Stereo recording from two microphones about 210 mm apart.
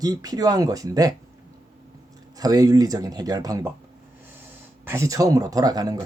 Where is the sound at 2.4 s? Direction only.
15° right (ahead or behind).